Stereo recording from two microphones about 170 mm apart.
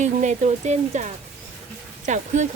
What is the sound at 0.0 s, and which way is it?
Speech, 45° right (ahead or behind).